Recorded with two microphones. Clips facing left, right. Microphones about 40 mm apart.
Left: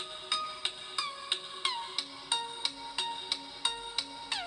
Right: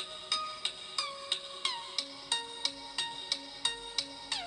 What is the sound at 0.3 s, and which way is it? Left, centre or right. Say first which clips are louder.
Music: left 1 dB; centre.